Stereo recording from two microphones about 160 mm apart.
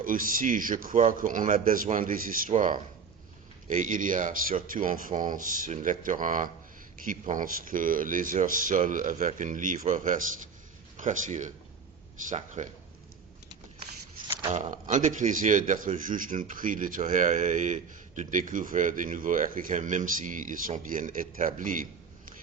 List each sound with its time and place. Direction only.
0.0 s speech: 60° right (ahead or behind)
12.6 s speech: 50° right (ahead or behind)
14.5 s speech: 50° right (ahead or behind)